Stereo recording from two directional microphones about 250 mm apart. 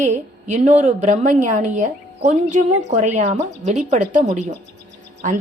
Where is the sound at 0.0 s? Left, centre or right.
Right.